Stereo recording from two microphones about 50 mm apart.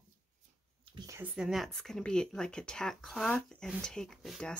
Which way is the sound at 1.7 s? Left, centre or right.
Centre.